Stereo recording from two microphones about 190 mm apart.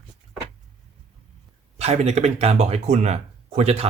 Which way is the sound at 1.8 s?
35° right (ahead or behind).